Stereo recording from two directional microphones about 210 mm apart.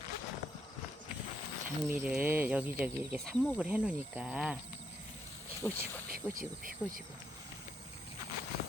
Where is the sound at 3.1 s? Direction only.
5° left (ahead or behind).